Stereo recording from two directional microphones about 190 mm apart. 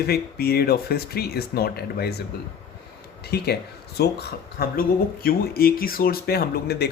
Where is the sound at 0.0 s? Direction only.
55° left (ahead or behind).